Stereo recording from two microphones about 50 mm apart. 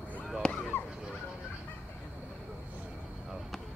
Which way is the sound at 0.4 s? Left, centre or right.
Left.